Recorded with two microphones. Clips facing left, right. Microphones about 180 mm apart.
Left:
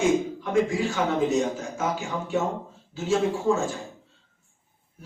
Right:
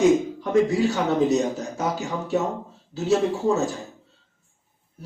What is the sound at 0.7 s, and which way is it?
A man's voice, 40° right (ahead or behind).